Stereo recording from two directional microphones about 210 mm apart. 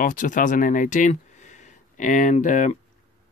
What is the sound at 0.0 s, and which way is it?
Speech, 40° left (ahead or behind).